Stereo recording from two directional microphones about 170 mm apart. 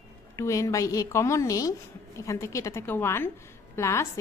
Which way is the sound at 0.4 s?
15° left (ahead or behind).